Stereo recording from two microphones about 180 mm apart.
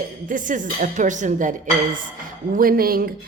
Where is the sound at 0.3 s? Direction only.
45° right (ahead or behind).